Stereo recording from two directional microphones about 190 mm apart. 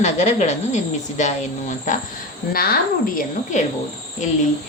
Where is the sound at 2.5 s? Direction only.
50° left (ahead or behind).